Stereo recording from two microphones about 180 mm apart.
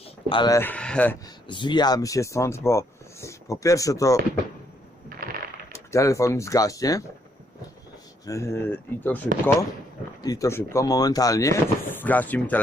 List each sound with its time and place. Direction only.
0.0 s speech: 30° left (ahead or behind); by 1.1 s 5° left (ahead or behind)
1.5 s speech: 25° left (ahead or behind)
5.0 s coin: 55° right (ahead or behind)
5.7 s speech: 15° left (ahead or behind)
8.2 s speech: 15° left (ahead or behind)
10.2 s speech: 20° left (ahead or behind)